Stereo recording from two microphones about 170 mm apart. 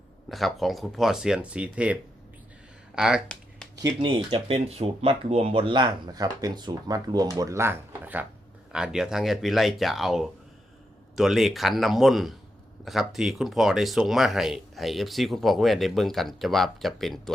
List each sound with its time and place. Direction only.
0.3 s speech: centre (ahead or behind)
2.9 s a sound: 5° right (ahead or behind)
3.8 s speech: 25° right (ahead or behind); by 17.3 s centre (ahead or behind)